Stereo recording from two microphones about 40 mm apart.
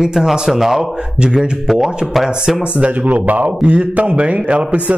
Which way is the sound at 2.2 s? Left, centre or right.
Centre.